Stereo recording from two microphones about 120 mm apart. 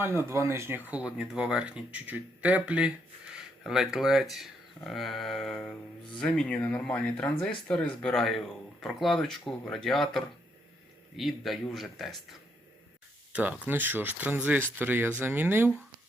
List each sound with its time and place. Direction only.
0.0 s speech: 20° right (ahead or behind); by 12.4 s centre (ahead or behind)
13.3 s speech: 10° right (ahead or behind)